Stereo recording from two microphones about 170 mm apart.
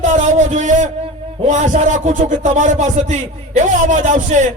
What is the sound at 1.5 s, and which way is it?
A man's voice, 45° right (ahead or behind).